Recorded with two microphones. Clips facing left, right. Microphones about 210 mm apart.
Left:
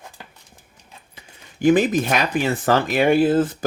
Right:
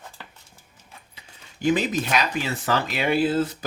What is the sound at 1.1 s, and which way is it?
Speech, 50° left (ahead or behind).